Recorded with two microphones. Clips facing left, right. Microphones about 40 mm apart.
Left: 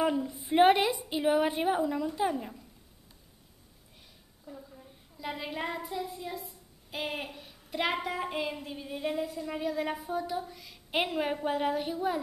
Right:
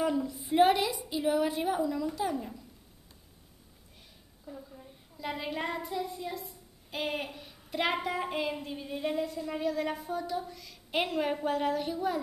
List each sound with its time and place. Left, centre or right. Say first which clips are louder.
0.0 s a woman's voice: left 1 dB; left
4.5 s a child's voice: right 1 dB; centre